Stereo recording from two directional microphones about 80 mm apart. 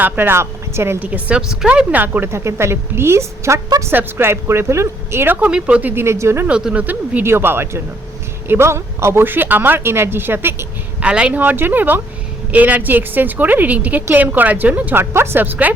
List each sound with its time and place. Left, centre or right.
0.0 s speech: right
1.1 s speech: centre
2.3 s speech: right
5.5 s speech: centre
5.9 s speech: right
6.5 s speech: centre
11.0 s speech: centre
15.1 s speech: right